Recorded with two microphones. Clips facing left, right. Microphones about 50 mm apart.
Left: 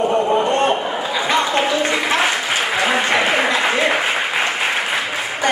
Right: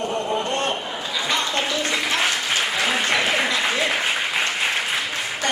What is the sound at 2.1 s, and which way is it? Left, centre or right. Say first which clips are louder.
Applause: left 4 dB; centre.